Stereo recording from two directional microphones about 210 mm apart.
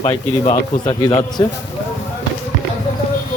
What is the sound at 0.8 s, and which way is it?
Speech, 20° left (ahead or behind).